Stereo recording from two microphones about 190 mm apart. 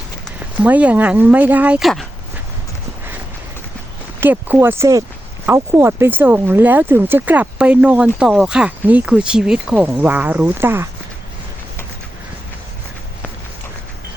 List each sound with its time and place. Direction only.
0.3 s speech: 10° right (ahead or behind)
4.2 s speech: 10° right (ahead or behind)